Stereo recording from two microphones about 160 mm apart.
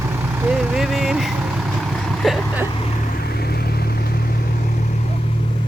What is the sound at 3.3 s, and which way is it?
Vehicle, 75° left (ahead or behind).